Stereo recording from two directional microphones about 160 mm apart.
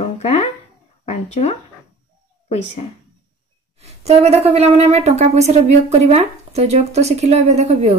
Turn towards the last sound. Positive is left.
turn(degrees=-45)  # may be behind; listen again after turning